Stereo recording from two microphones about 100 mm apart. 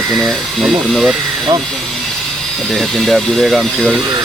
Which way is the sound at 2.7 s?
Centre (ahead or behind).